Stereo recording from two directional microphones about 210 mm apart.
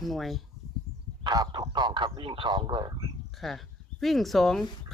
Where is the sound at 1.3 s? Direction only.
20° right (ahead or behind).